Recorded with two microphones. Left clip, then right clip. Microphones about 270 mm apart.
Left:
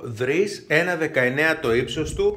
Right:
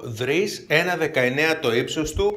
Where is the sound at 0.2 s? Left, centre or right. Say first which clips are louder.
Left 1 dB; centre.